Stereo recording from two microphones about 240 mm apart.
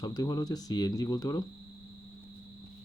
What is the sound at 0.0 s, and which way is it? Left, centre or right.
Speech, centre.